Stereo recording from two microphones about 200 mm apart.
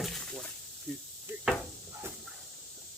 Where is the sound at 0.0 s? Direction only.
Centre (ahead or behind).